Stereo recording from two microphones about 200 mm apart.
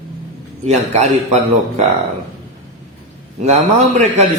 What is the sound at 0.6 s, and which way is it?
Speech, 35° right (ahead or behind).